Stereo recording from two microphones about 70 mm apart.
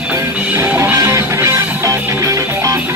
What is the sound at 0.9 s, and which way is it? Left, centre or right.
Music, right.